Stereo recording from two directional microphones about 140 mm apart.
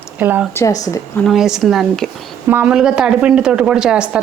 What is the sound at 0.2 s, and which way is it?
Speech, 15° right (ahead or behind).